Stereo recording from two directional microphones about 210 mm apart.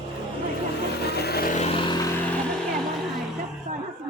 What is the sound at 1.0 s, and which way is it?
Vehicle, 50° left (ahead or behind).